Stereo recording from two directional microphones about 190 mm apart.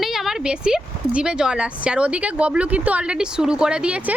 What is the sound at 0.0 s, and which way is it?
Speech, centre (ahead or behind).